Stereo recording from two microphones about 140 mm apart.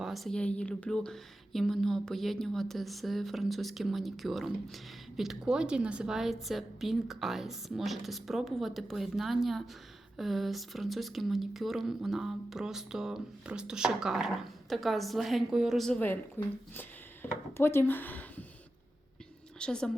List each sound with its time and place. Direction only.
0.0 s speech: centre (ahead or behind)
16.4 s speech: 15° left (ahead or behind)
17.6 s speech: 15° left (ahead or behind)
19.5 s a woman's voice: 5° left (ahead or behind)